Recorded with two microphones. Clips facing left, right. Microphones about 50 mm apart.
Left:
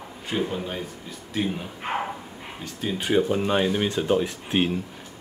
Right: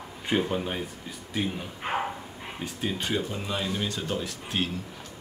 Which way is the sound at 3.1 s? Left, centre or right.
Left.